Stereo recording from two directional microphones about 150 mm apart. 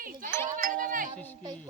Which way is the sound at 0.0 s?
65° right (ahead or behind).